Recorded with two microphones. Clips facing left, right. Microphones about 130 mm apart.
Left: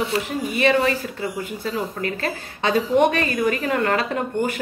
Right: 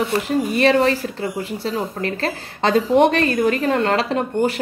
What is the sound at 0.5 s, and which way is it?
Speech, 35° right (ahead or behind).